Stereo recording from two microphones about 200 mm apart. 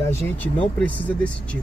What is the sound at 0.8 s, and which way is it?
Speech, 5° left (ahead or behind).